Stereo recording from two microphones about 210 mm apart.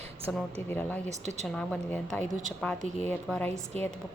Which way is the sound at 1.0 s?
35° right (ahead or behind).